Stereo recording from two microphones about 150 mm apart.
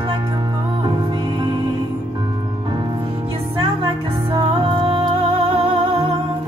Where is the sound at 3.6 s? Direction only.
30° right (ahead or behind).